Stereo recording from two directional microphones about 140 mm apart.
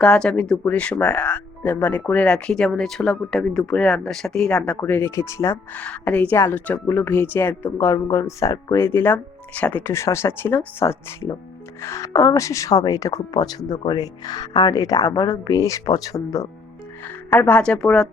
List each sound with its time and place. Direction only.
0.0 s a woman's voice: 5° left (ahead or behind); by 16.5 s 20° left (ahead or behind)
17.2 s speech: 10° left (ahead or behind)